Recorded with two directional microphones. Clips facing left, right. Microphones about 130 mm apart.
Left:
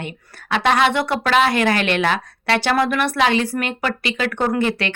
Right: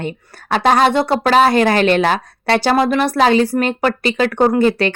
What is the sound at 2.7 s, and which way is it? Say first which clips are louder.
Speech: right 4 dB; 30° right (ahead or behind).